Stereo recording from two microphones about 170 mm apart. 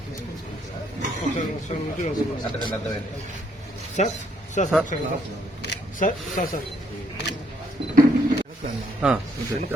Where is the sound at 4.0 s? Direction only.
40° left (ahead or behind).